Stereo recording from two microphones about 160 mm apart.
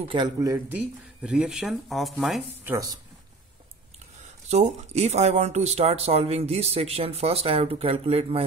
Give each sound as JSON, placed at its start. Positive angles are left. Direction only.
{"t": 0.0, "sound": "speech", "side_deg": -30}
{"t": 0.4, "sound": "speech", "side_deg": -15}
{"t": 2.6, "sound": "a woman's voice", "side_deg": -20}
{"t": 4.5, "sound": "speech", "side_deg": -45}